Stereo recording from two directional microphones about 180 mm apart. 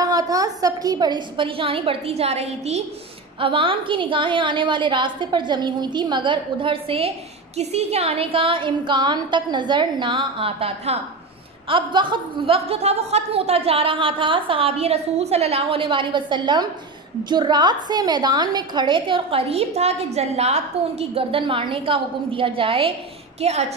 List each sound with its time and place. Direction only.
0.0 s a woman's voice: 20° right (ahead or behind); by 23.7 s 35° right (ahead or behind)